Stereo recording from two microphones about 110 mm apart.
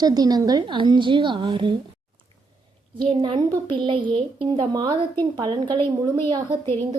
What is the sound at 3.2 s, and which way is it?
Speech, 40° right (ahead or behind).